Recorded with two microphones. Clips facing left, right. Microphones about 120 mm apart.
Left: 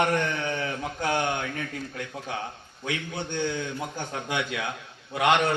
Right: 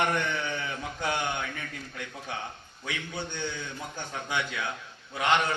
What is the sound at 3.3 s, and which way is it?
Speech, 55° left (ahead or behind).